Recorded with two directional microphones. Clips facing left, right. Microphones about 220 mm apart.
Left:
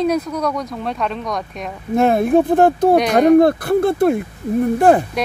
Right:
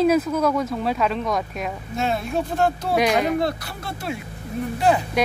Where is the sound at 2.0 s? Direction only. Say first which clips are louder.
Left 11 dB; 55° left (ahead or behind).